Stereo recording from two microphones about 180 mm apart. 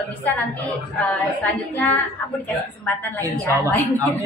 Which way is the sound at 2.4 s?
10° left (ahead or behind).